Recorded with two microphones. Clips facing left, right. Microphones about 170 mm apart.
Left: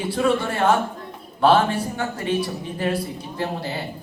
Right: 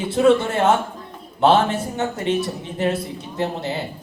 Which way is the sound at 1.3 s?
25° right (ahead or behind).